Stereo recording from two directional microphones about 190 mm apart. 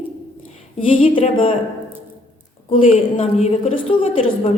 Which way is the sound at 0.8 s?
30° left (ahead or behind).